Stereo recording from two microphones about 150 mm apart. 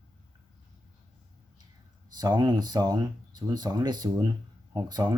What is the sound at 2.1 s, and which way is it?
Speech, 25° right (ahead or behind).